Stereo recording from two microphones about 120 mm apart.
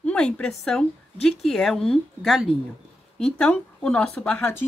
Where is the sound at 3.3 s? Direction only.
10° left (ahead or behind).